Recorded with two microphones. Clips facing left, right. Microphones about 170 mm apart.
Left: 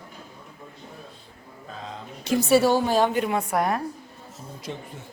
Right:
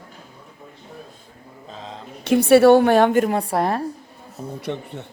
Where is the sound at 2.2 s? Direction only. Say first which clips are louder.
Right 7 dB; 60° right (ahead or behind); by 3.8 s 30° right (ahead or behind).